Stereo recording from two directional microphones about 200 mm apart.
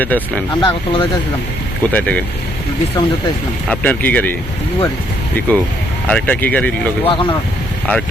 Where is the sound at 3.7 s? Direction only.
5° left (ahead or behind).